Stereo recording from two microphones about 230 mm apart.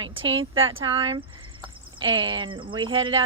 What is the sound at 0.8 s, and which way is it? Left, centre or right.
Speech, right.